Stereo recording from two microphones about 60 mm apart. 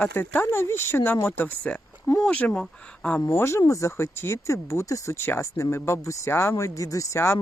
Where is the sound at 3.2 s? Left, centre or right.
Left.